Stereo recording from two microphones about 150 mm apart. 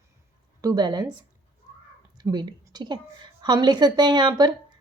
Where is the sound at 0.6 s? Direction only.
30° right (ahead or behind).